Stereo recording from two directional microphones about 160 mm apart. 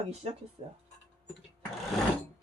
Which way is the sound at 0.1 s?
40° right (ahead or behind).